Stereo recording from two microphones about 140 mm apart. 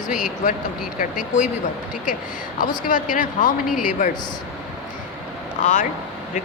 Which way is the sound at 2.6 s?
75° left (ahead or behind).